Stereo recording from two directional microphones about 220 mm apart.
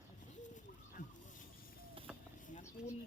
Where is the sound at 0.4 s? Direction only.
35° left (ahead or behind).